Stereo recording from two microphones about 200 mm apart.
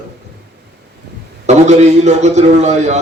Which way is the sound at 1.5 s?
35° right (ahead or behind).